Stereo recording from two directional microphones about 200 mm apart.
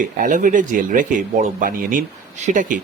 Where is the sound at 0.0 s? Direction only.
40° right (ahead or behind).